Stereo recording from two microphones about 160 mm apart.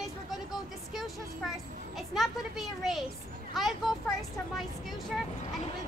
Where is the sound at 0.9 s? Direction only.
Centre (ahead or behind).